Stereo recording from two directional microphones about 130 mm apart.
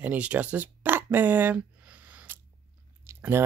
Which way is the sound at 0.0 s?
10° right (ahead or behind).